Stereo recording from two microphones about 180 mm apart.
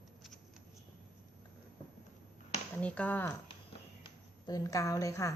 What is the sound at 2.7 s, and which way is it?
Speech, 5° left (ahead or behind).